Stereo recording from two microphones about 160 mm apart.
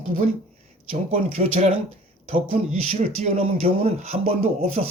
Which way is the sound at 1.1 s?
40° right (ahead or behind).